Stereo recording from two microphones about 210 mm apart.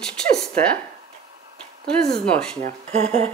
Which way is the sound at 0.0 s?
5° left (ahead or behind).